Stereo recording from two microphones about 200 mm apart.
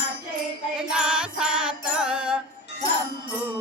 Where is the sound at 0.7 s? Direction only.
5° right (ahead or behind).